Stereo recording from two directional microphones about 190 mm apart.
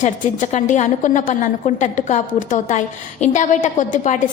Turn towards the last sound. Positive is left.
turn(degrees=40)  # may be behind; listen again after turning